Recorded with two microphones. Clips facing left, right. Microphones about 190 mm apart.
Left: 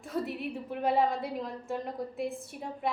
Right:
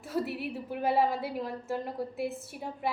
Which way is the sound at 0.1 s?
5° right (ahead or behind).